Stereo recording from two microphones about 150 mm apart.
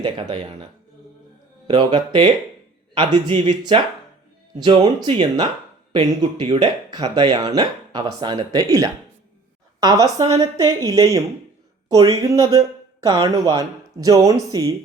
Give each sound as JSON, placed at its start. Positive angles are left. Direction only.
{"t": 0.0, "sound": "a woman's voice", "side_deg": -35}